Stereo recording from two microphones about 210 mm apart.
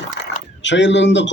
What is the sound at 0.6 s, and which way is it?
Speech, 60° left (ahead or behind).